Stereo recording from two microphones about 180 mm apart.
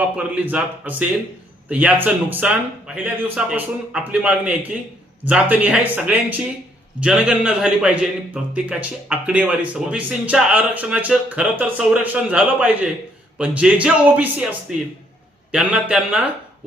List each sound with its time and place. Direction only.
0.2 s a man's voice: 10° right (ahead or behind)